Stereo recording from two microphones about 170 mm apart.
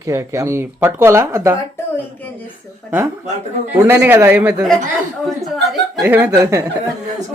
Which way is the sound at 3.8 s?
10° right (ahead or behind).